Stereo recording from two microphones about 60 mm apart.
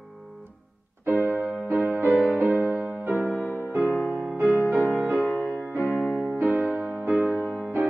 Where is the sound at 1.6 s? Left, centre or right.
Right.